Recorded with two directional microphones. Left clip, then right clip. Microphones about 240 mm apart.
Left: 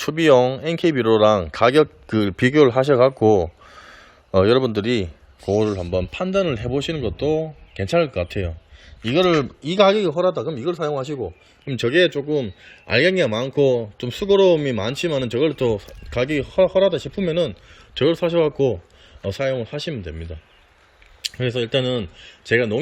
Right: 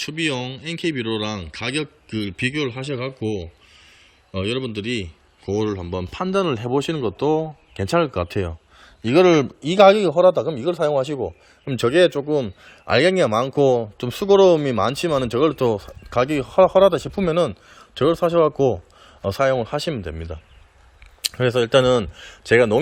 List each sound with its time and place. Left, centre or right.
0.0 s speech: centre
3.3 s a sound: left
4.3 s a man's voice: centre